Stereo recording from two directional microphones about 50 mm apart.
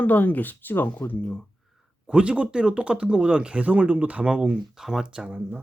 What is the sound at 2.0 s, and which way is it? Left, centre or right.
Speech, right.